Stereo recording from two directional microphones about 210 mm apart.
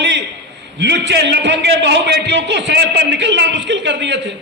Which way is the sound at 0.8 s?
55° right (ahead or behind).